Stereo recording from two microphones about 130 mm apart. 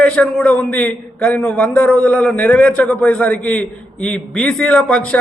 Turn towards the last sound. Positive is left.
turn(degrees=10)  # may be behind; listen again after turning